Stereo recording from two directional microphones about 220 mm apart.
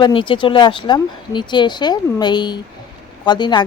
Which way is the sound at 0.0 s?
25° left (ahead or behind).